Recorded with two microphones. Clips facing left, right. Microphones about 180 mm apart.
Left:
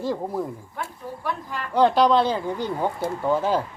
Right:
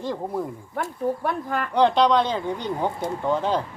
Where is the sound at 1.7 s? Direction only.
Centre (ahead or behind).